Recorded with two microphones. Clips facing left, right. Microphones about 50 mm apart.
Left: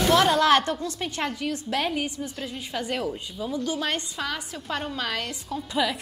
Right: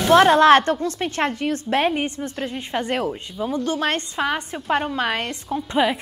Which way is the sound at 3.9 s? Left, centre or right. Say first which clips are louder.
Right 7 dB; right.